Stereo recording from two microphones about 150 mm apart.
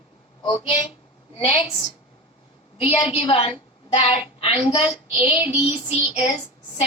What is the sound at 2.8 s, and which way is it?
A woman's voice, 35° left (ahead or behind).